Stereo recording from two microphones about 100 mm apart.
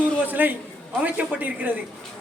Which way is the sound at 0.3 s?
20° right (ahead or behind).